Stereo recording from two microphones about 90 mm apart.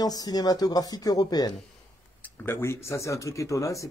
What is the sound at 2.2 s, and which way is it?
A man's voice, 25° left (ahead or behind).